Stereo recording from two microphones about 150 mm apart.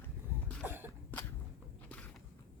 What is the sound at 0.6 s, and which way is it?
Cough, 15° right (ahead or behind).